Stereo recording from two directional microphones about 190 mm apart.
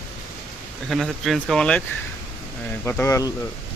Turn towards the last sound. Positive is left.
turn(degrees=15)  # may be behind; listen again after turning